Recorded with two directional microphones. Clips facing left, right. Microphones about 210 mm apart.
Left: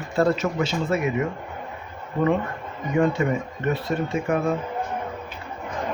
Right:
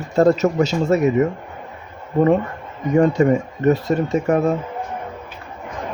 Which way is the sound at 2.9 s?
45° right (ahead or behind).